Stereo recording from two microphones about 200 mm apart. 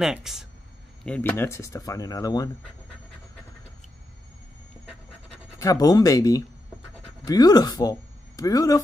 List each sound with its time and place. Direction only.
0.0 s speech: centre (ahead or behind); by 2.5 s 20° left (ahead or behind)
5.6 s speech: 15° left (ahead or behind)